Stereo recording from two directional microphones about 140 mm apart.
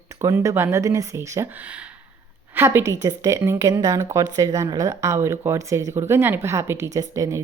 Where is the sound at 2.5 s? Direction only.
15° right (ahead or behind).